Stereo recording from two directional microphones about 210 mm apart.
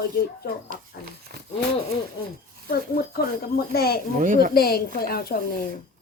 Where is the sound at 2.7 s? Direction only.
45° left (ahead or behind).